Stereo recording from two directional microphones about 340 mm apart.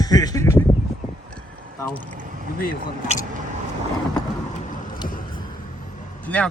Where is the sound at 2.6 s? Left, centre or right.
Left.